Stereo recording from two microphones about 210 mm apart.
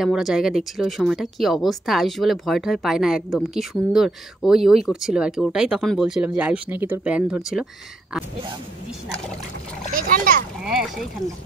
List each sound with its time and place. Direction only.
0.0 s speech: centre (ahead or behind)
9.9 s a child's voice: 40° right (ahead or behind)
10.6 s speech: centre (ahead or behind)